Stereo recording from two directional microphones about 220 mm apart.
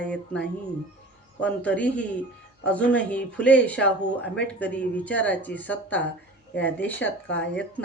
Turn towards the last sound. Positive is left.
turn(degrees=5)  # may be behind; listen again after turning